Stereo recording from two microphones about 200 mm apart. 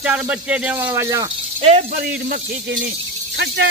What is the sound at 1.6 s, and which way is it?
Speech, 30° right (ahead or behind).